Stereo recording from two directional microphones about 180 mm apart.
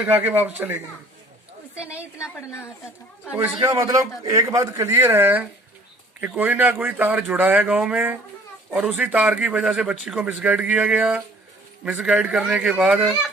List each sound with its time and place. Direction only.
0.0 s a man's voice: 10° right (ahead or behind)
2.1 s a woman's voice: 15° left (ahead or behind)
3.6 s a man's voice: 20° right (ahead or behind)